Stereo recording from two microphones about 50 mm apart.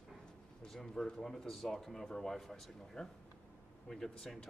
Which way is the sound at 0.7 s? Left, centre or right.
Centre.